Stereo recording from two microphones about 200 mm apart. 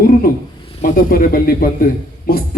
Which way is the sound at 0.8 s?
45° left (ahead or behind).